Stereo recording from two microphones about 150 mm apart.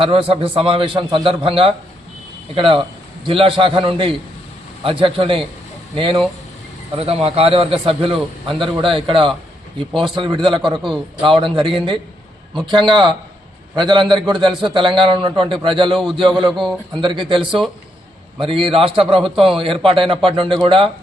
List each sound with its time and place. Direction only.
0.0 s a man's voice: 35° right (ahead or behind)